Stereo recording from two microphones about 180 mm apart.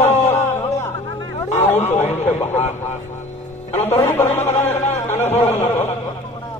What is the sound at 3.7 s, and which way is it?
Speech, 15° left (ahead or behind).